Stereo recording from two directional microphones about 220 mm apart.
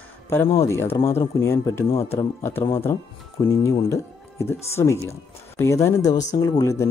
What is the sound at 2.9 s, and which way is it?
Speech, 10° left (ahead or behind).